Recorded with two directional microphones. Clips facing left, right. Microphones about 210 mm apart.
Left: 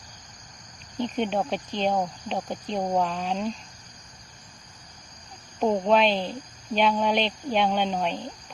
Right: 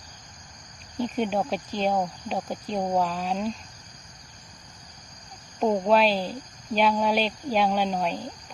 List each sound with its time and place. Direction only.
0.9 s speech: 5° right (ahead or behind)
5.5 s speech: centre (ahead or behind)